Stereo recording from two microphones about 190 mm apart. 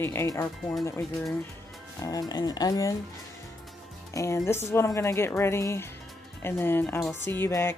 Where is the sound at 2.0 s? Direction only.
20° left (ahead or behind).